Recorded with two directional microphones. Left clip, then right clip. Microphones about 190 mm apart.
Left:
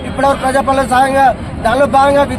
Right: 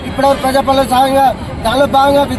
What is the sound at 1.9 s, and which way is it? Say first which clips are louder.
Speech: even; 20° left (ahead or behind).